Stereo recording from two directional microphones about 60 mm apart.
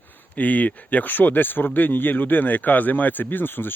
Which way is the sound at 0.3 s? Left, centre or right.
Left.